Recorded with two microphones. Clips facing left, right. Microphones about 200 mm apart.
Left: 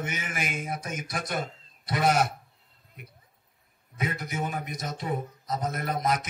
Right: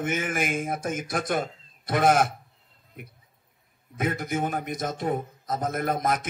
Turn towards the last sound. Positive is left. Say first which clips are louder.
# right 2 dB
turn(degrees=-50)  # may be behind; listen again after turning